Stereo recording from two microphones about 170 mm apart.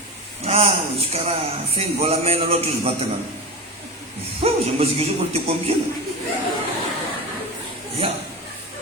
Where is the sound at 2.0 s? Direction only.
35° right (ahead or behind).